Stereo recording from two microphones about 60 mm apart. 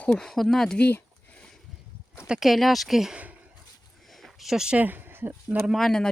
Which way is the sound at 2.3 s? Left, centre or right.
Centre.